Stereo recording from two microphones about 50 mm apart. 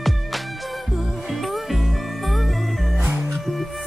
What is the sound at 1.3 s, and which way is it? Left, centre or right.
Music, centre.